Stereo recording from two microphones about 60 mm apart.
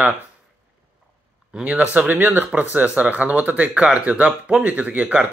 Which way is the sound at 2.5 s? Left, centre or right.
Right.